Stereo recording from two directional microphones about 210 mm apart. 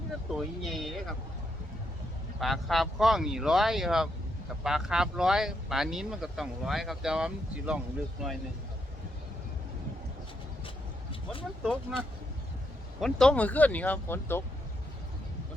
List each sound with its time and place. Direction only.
0.3 s speech: centre (ahead or behind)
2.4 s speech: centre (ahead or behind)
11.1 s a sound: 25° left (ahead or behind)
11.6 s speech: centre (ahead or behind)
13.0 s speech: centre (ahead or behind)